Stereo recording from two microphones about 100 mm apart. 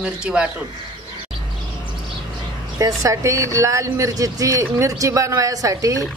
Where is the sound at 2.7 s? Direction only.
35° right (ahead or behind).